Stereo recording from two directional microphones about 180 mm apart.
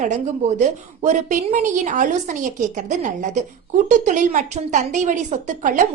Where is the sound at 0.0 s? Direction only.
40° right (ahead or behind).